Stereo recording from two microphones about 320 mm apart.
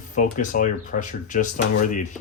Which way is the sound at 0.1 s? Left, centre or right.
Left.